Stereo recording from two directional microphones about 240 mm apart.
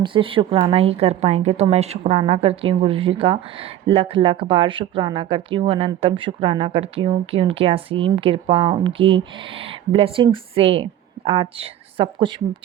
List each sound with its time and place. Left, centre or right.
0.0 s a woman's voice: right